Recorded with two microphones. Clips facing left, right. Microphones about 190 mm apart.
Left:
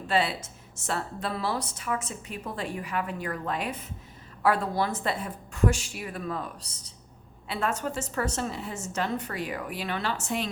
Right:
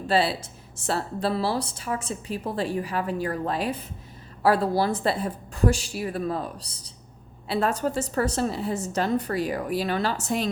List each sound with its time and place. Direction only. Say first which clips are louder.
0.1 s a woman's voice: right 4 dB; 35° right (ahead or behind)